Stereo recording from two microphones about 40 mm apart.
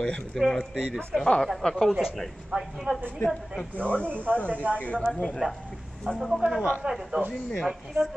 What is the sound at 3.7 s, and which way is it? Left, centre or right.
Speech, left.